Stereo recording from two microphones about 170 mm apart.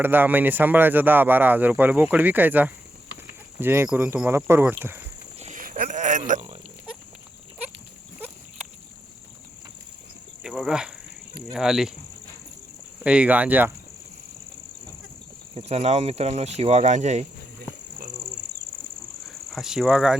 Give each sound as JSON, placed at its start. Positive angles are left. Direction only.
{"t": 0.0, "sound": "speech", "side_deg": -10}
{"t": 5.4, "sound": "a sound", "side_deg": -50}
{"t": 10.4, "sound": "speech", "side_deg": -5}
{"t": 13.1, "sound": "speech", "side_deg": -5}
{"t": 15.5, "sound": "speech", "side_deg": -40}
{"t": 19.5, "sound": "speech", "side_deg": 0}